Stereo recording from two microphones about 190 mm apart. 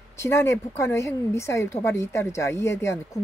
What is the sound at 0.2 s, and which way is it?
A woman's voice, 15° left (ahead or behind).